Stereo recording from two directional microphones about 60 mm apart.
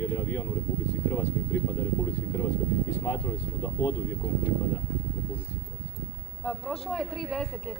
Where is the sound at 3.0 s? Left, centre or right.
Left.